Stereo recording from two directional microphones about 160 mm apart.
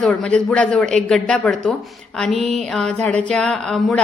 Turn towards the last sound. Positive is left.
turn(degrees=5)  # may be behind; listen again after turning